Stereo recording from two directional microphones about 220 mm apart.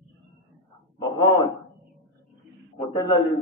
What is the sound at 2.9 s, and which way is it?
Speech, 20° left (ahead or behind).